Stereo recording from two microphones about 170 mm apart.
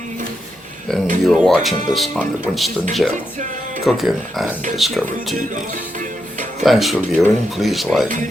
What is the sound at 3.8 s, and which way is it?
Speech, centre (ahead or behind).